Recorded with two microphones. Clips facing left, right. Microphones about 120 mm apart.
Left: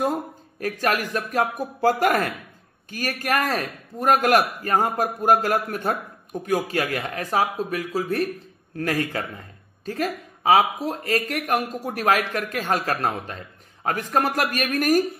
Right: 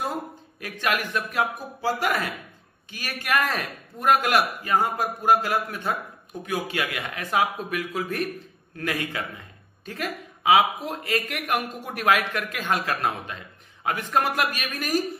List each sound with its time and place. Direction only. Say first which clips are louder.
0.0 s speech: left 5 dB; 40° left (ahead or behind)
1.8 s a man's voice: left 6 dB; 50° left (ahead or behind)